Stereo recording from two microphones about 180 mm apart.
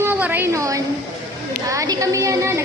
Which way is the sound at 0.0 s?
10° right (ahead or behind).